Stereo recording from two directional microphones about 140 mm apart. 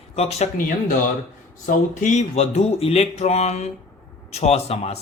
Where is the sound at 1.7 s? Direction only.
60° left (ahead or behind).